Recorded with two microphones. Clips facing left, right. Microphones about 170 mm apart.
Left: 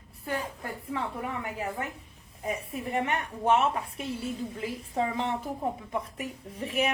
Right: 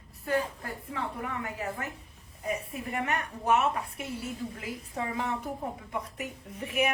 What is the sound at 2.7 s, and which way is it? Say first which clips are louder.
A woman's voice: left 2 dB; 30° left (ahead or behind).